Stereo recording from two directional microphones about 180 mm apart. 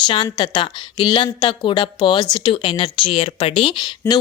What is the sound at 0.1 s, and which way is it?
A woman's voice, 25° left (ahead or behind).